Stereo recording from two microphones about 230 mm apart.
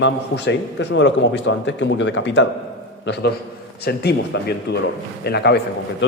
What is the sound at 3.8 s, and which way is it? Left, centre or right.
Speech, left.